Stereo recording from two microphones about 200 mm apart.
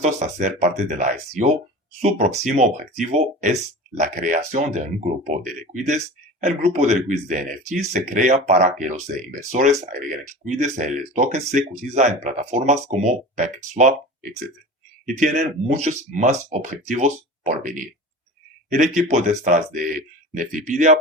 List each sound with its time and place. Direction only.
0.0 s speech: 35° right (ahead or behind)